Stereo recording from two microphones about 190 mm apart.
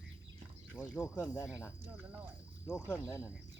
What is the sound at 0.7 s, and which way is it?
Speech, 5° left (ahead or behind).